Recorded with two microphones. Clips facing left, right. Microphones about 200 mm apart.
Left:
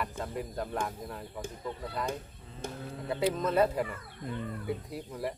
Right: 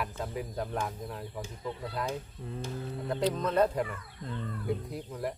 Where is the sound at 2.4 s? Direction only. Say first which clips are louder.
Right 10 dB; 65° right (ahead or behind).